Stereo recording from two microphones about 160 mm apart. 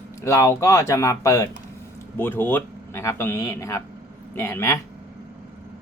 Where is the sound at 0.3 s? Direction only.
20° left (ahead or behind).